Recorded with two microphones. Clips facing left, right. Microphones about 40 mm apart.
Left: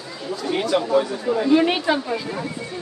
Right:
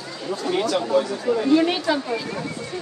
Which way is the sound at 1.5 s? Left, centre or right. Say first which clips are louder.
Left 2 dB; left.